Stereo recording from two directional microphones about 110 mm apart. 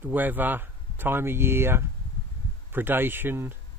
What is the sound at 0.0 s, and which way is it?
Speech, 15° right (ahead or behind).